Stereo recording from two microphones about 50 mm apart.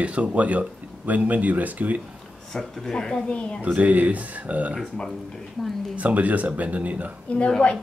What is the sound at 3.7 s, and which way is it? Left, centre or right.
Speech, right.